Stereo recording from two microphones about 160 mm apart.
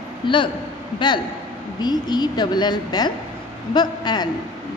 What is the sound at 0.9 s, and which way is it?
A woman's voice, 30° left (ahead or behind).